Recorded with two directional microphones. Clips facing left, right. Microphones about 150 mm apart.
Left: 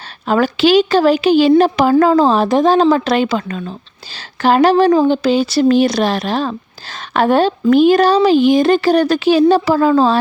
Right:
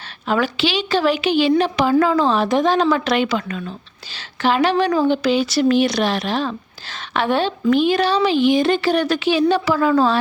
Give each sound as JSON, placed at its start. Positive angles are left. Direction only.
{"t": 0.3, "sound": "a woman's voice", "side_deg": 40}